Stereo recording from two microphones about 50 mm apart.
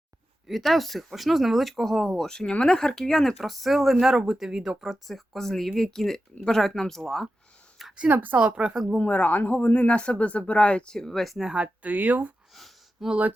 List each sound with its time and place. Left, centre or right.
0.4 s speech: centre
8.0 s speech: right
8.4 s speech: right
9.0 s speech: left; by 11.3 s centre
11.3 s speech: centre
11.6 s speech: right
13.0 s speech: centre